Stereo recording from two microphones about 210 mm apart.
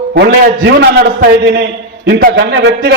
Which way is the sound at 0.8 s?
50° right (ahead or behind).